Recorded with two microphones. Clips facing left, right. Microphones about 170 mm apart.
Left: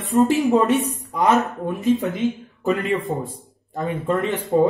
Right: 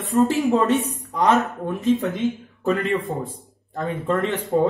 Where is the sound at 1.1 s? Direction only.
5° left (ahead or behind).